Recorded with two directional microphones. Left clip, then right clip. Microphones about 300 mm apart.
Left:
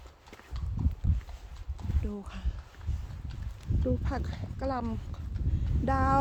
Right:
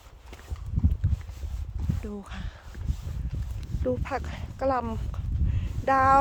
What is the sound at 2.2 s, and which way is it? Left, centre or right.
Speech, centre.